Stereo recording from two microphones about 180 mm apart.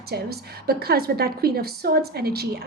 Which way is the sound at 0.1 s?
60° right (ahead or behind).